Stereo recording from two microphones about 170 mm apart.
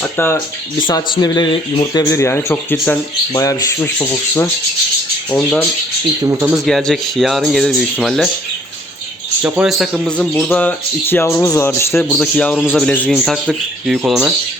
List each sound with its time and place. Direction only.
0.0 s rub: 10° left (ahead or behind)
0.8 s speech: 25° left (ahead or behind)
1.9 s rub: 20° left (ahead or behind)
6.3 s speech: 10° right (ahead or behind)
6.7 s a man's voice: centre (ahead or behind)
9.4 s a man's voice: 5° right (ahead or behind)
11.1 s rub: 15° left (ahead or behind)
12.0 s a man's voice: 5° left (ahead or behind)